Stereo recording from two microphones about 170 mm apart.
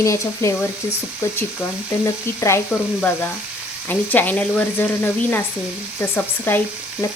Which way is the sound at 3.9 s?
10° left (ahead or behind).